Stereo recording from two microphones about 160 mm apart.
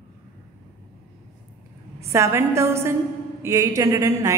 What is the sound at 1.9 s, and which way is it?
A woman's voice, 20° right (ahead or behind).